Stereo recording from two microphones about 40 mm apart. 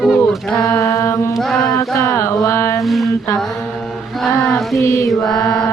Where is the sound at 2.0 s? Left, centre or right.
Left.